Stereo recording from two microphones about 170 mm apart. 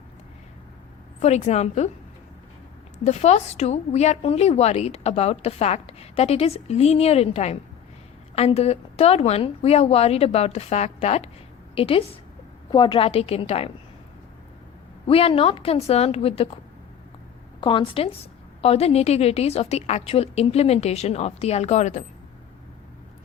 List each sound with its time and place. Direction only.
1.2 s a woman's voice: 40° left (ahead or behind)
3.0 s a woman's voice: 40° left (ahead or behind)
15.0 s a woman's voice: 35° left (ahead or behind)
17.6 s a woman's voice: 30° left (ahead or behind); by 22.0 s 45° left (ahead or behind)